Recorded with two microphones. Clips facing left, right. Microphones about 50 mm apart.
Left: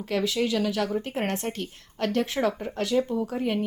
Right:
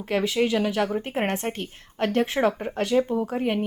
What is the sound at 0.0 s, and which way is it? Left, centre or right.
A woman's voice, right.